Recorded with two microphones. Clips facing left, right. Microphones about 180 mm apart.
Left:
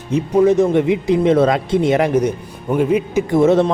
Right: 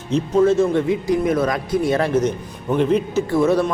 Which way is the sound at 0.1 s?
15° left (ahead or behind).